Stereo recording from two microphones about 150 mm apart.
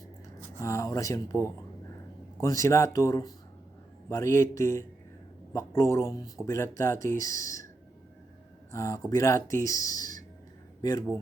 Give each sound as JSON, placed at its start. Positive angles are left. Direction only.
{"t": 0.6, "sound": "speech", "side_deg": 20}
{"t": 8.7, "sound": "speech", "side_deg": 20}